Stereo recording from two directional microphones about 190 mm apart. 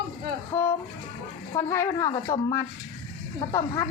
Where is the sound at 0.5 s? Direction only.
15° left (ahead or behind).